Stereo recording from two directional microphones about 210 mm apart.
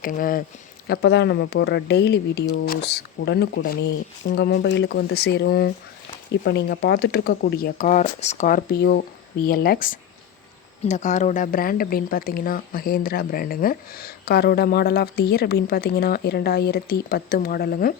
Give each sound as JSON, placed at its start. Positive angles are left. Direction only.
{"t": 0.0, "sound": "speech", "side_deg": 40}
{"t": 0.9, "sound": "speech", "side_deg": 50}